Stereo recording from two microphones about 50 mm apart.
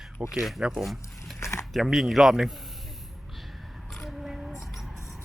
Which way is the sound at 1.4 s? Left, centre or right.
Left.